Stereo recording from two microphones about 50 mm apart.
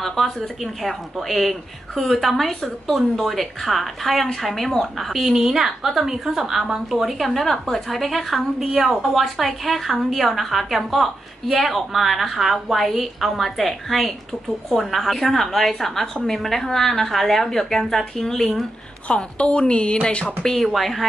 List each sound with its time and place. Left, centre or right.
0.0 s speech: centre
19.0 s a woman's voice: left
20.4 s speech: centre